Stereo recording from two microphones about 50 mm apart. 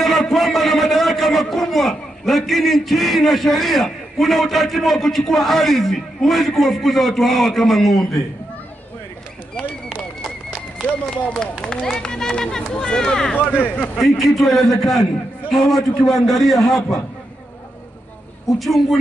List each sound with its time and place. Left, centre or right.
0.0 s a man's voice: centre
10.9 s speech: centre
13.3 s speech: left
14.0 s a man's voice: centre
18.6 s a man's voice: centre